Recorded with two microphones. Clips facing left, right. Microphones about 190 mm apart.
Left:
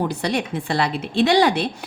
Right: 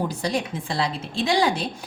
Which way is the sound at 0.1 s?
65° left (ahead or behind).